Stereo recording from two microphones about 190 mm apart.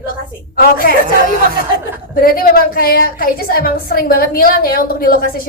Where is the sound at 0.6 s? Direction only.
50° left (ahead or behind).